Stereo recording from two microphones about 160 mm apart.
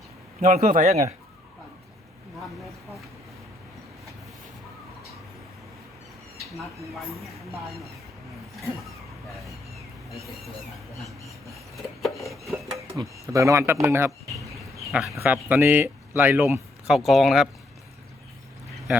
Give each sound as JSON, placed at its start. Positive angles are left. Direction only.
{"t": 0.4, "sound": "a man's voice", "side_deg": -60}
{"t": 11.8, "sound": "speech", "side_deg": 0}
{"t": 12.7, "sound": "speech", "side_deg": -20}
{"t": 14.8, "sound": "speech", "side_deg": 0}
{"t": 15.2, "sound": "speech", "side_deg": -10}
{"t": 16.8, "sound": "speech", "side_deg": 0}